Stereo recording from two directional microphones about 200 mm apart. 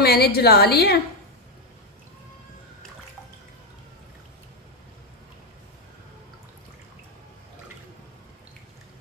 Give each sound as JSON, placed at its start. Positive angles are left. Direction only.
{"t": 0.0, "sound": "a woman's voice", "side_deg": 50}